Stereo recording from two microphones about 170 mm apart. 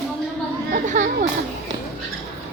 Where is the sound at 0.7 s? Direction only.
45° right (ahead or behind).